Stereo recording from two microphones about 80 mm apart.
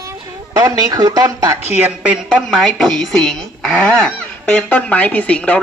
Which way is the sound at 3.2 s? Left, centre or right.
Centre.